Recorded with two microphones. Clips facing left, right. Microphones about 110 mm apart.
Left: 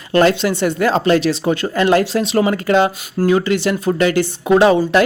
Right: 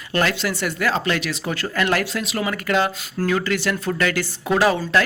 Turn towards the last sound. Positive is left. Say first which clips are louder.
# left 7 dB
turn(degrees=25)  # may be behind; listen again after turning